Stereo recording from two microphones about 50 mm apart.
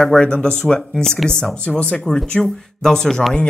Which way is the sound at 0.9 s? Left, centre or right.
Centre.